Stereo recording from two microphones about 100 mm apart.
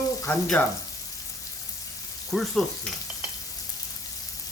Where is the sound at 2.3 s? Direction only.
Centre (ahead or behind).